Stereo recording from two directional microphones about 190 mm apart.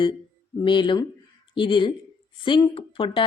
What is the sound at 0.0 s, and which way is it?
A woman's voice, 25° left (ahead or behind).